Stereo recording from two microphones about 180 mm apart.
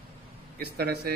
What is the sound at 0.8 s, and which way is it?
Speech, 60° right (ahead or behind).